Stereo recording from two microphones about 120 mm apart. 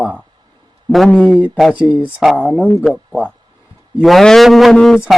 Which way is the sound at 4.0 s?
Centre (ahead or behind).